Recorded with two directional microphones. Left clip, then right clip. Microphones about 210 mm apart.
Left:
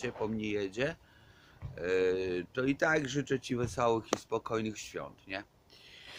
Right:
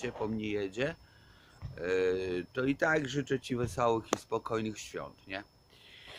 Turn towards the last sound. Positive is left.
turn(degrees=5)  # may be behind; listen again after turning